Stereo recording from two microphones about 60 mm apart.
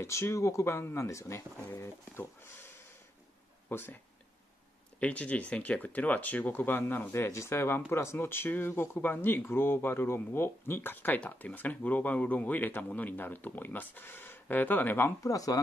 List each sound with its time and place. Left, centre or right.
0.0 s speech: left
5.0 s speech: left
15.2 s speech: left